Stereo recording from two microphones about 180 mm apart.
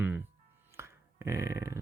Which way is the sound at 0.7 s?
15° right (ahead or behind).